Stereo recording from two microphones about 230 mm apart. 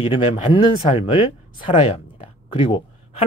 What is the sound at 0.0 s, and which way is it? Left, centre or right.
Speech, left.